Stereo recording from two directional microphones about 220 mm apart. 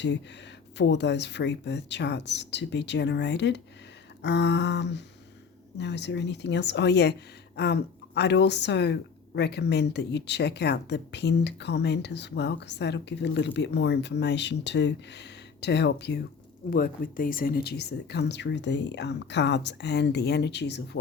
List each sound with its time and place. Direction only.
0.8 s speech: 50° left (ahead or behind)